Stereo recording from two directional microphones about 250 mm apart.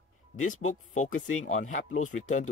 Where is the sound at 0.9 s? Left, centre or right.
Left.